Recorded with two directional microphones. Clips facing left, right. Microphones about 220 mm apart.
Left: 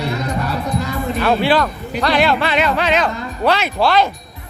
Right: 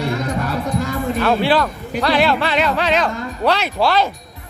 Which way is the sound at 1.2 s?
5° left (ahead or behind).